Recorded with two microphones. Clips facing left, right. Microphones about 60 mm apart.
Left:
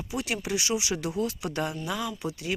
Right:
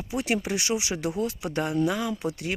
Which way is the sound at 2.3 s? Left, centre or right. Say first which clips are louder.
Right 1 dB; right.